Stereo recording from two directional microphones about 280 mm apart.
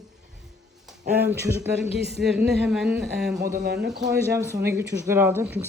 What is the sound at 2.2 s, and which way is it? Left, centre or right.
Speech, centre.